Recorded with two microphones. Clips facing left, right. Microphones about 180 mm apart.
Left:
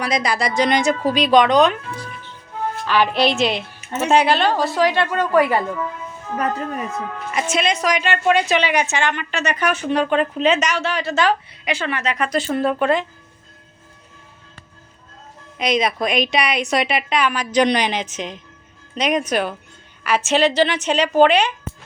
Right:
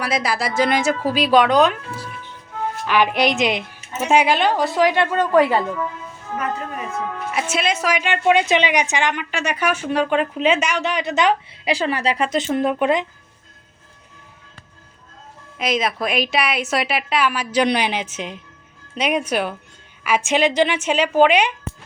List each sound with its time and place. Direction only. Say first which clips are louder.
0.0 s a woman's voice: left 1 dB; 5° right (ahead or behind)
2.8 s a woman's voice: even; 15° right (ahead or behind)
7.3 s a woman's voice: left 2 dB; 5° right (ahead or behind)
11.6 s a woman's voice: right 4 dB; 35° right (ahead or behind); by 13.1 s 15° right (ahead or behind)
15.5 s a woman's voice: left 2 dB; 5° right (ahead or behind)